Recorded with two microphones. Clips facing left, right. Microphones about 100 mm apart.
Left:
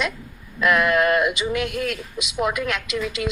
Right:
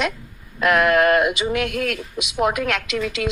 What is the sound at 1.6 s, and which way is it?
Speech, 55° right (ahead or behind).